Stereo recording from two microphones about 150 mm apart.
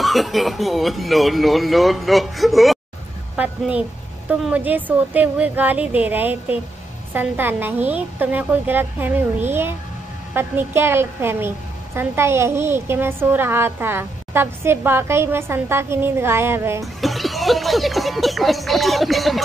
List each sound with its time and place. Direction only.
0.0 s a woman's voice: centre (ahead or behind); by 16.8 s 15° right (ahead or behind)
16.8 s speech: centre (ahead or behind)